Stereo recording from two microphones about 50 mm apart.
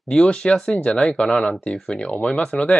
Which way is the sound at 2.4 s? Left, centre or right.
Centre.